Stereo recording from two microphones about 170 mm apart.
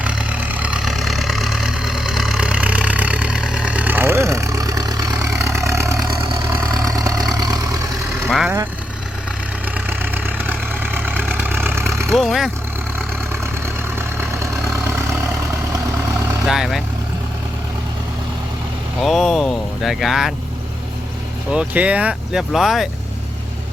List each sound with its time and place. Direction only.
0.0 s vehicle: 5° right (ahead or behind)
8.3 s vehicle: centre (ahead or behind)
9.7 s vehicle: 10° right (ahead or behind)
12.1 s vehicle: centre (ahead or behind)
14.2 s vehicle: 15° right (ahead or behind)
16.5 s vehicle: centre (ahead or behind)
18.9 s vehicle: centre (ahead or behind)
21.5 s speech: 5° right (ahead or behind)